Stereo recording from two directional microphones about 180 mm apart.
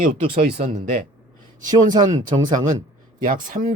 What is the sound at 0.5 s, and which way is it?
Speech, 40° right (ahead or behind).